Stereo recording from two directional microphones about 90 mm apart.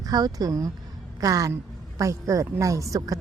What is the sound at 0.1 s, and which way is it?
A woman's voice, 45° right (ahead or behind).